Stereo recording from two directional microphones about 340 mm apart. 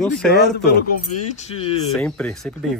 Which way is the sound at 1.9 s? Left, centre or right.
Centre.